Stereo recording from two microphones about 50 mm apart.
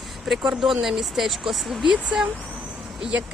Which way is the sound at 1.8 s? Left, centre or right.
Centre.